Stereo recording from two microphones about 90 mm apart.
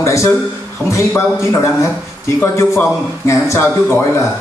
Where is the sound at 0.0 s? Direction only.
35° left (ahead or behind).